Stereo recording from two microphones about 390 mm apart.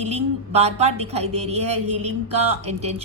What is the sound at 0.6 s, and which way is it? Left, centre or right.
A woman's voice, centre.